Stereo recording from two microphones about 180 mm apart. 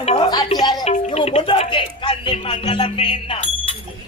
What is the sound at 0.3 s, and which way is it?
Speech, 25° left (ahead or behind).